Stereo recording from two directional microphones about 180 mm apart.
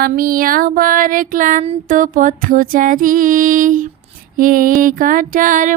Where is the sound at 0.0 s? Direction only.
50° right (ahead or behind).